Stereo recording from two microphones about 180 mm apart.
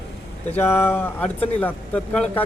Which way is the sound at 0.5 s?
10° left (ahead or behind).